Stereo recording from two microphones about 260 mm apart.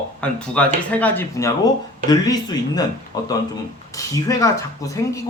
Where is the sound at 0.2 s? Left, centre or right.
Centre.